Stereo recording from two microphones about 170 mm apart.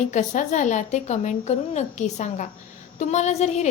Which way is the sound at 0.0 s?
45° left (ahead or behind).